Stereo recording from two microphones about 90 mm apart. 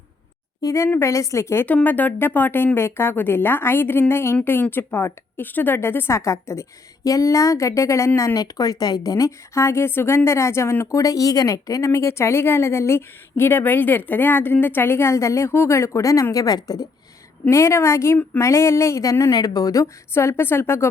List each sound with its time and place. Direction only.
0.6 s a woman's voice: 35° left (ahead or behind)
1.6 s a woman's voice: 20° left (ahead or behind)
8.4 s speech: 45° left (ahead or behind)
17.5 s a woman's voice: 30° left (ahead or behind)